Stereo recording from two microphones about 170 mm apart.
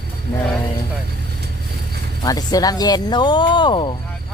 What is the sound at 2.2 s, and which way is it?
Speech, 20° left (ahead or behind).